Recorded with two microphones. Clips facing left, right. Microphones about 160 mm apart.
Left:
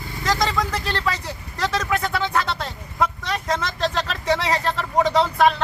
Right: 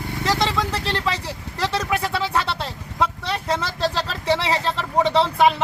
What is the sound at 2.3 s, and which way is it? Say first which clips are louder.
Vehicle: even; 30° right (ahead or behind).